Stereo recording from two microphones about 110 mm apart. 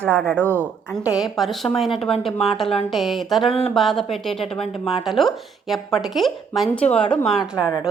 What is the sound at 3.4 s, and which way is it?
Speech, 65° left (ahead or behind).